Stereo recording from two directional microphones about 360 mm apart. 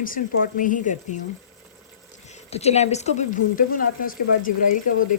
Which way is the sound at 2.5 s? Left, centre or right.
Centre.